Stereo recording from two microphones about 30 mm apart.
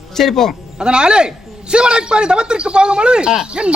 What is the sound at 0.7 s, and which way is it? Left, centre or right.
A man's voice, right.